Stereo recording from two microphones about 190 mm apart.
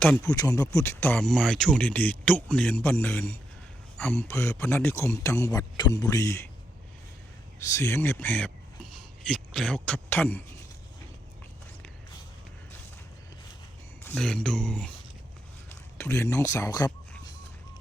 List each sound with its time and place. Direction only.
0.0 s speech: 5° left (ahead or behind)
7.8 s speech: 15° left (ahead or behind)
14.0 s speech: 5° left (ahead or behind)
16.0 s speech: 15° left (ahead or behind)